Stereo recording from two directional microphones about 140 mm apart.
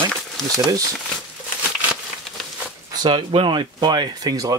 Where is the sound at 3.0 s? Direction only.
40° right (ahead or behind).